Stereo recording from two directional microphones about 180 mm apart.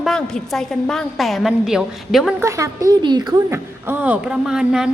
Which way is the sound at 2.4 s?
15° right (ahead or behind).